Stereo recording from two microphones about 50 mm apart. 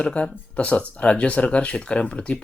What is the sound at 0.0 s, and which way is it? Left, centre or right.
Speech, left.